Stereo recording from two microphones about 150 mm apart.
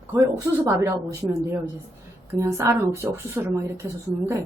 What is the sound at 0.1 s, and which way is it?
Speech, 20° right (ahead or behind).